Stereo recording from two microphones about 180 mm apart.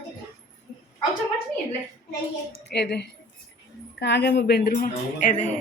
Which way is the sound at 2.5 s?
70° left (ahead or behind).